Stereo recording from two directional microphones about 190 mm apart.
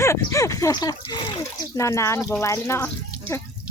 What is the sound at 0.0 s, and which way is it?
Speech, 15° left (ahead or behind).